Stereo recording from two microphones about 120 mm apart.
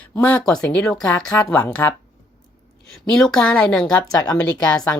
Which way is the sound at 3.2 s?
5° left (ahead or behind).